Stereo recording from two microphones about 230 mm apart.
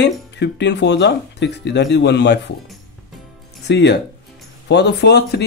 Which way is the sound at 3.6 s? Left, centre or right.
Left.